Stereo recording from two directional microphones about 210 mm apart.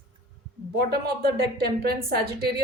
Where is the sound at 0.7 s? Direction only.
50° right (ahead or behind).